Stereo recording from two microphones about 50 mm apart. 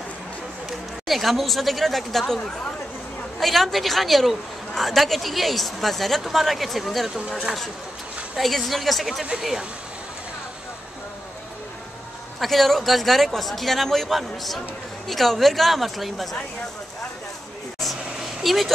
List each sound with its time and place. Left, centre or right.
0.7 s a woman's voice: centre
7.2 s speech: centre
8.4 s a woman's voice: centre
12.4 s a woman's voice: centre
18.4 s speech: centre